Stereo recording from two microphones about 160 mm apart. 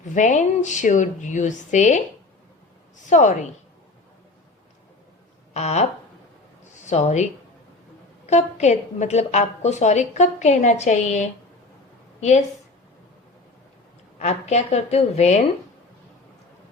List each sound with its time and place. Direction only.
0.1 s a woman's voice: 50° left (ahead or behind)
3.1 s a woman's voice: 50° left (ahead or behind)
5.5 s a woman's voice: 45° left (ahead or behind)
6.8 s speech: 45° left (ahead or behind)
8.3 s a woman's voice: 45° left (ahead or behind)
14.2 s a woman's voice: 45° left (ahead or behind)